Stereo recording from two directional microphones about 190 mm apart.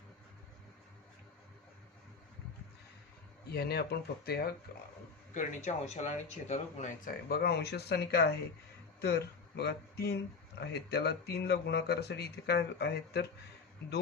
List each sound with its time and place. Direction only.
3.5 s speech: 55° left (ahead or behind)
5.3 s speech: 40° left (ahead or behind); by 13.2 s 60° left (ahead or behind)